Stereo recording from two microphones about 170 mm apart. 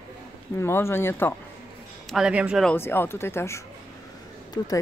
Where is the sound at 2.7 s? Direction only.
15° left (ahead or behind).